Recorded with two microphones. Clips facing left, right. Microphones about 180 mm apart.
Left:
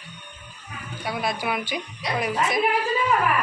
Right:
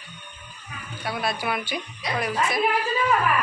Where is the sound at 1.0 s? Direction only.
15° left (ahead or behind).